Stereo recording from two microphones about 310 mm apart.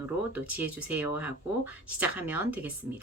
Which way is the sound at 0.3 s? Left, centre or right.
Centre.